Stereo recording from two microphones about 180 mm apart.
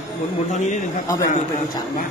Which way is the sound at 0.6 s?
40° left (ahead or behind).